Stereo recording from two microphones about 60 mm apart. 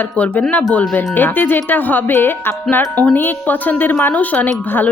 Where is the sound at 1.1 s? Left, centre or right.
Left.